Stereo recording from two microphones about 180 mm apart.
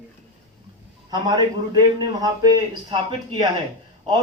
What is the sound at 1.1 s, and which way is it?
A man's voice, 25° right (ahead or behind).